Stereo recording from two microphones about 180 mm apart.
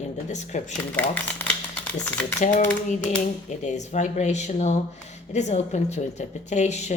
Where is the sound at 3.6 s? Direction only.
40° left (ahead or behind).